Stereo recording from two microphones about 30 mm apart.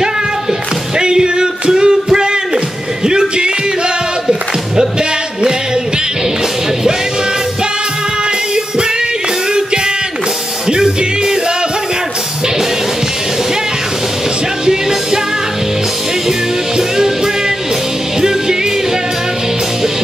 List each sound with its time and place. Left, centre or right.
0.9 s music: right
10.7 s music: right